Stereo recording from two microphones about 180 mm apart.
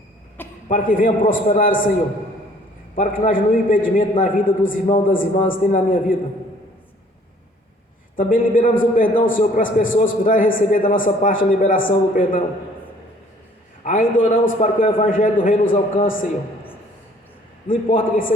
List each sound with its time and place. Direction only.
0.7 s a man's voice: 50° left (ahead or behind)
2.9 s a man's voice: 50° left (ahead or behind)
8.1 s a man's voice: 50° left (ahead or behind)
13.8 s a man's voice: 50° left (ahead or behind)
17.7 s a man's voice: 50° left (ahead or behind)